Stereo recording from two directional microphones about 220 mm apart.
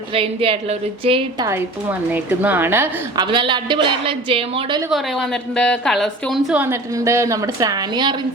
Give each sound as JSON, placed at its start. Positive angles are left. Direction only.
{"t": 0.1, "sound": "a woman's voice", "side_deg": -25}
{"t": 1.5, "sound": "a woman's voice", "side_deg": -10}
{"t": 3.2, "sound": "a woman's voice", "side_deg": -20}
{"t": 4.9, "sound": "a woman's voice", "side_deg": 0}